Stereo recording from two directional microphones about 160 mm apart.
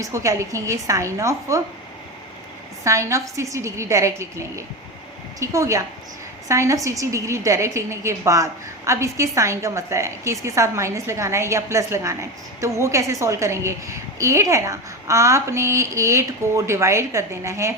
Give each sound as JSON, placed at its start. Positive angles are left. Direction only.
{"t": 0.0, "sound": "a woman's voice", "side_deg": -20}
{"t": 2.8, "sound": "a woman's voice", "side_deg": -20}